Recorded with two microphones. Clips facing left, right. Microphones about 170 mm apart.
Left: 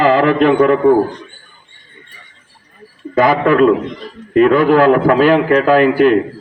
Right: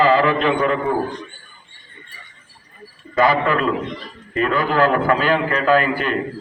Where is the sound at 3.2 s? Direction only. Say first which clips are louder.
Left 6 dB; 55° left (ahead or behind).